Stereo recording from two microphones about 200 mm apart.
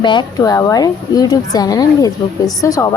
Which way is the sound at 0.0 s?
20° left (ahead or behind).